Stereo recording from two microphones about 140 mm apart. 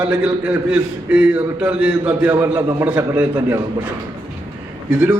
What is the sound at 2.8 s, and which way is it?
Speech, 10° right (ahead or behind).